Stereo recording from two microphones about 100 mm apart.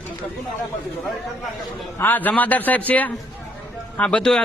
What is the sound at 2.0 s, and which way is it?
A man's voice, 15° left (ahead or behind).